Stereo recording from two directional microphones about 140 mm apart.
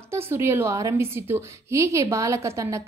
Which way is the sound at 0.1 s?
20° right (ahead or behind).